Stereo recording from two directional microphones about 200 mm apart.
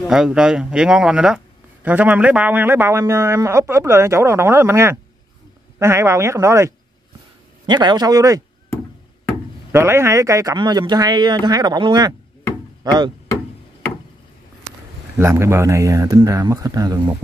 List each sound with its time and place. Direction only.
0.1 s speech: 5° right (ahead or behind)
9.7 s speech: 15° right (ahead or behind)
15.1 s speech: 15° right (ahead or behind)